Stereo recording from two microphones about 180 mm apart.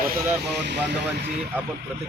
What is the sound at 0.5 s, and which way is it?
Speech, 70° right (ahead or behind).